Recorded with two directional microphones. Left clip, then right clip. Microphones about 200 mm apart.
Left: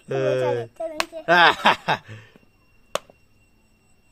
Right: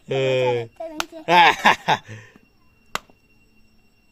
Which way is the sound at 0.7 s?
25° left (ahead or behind).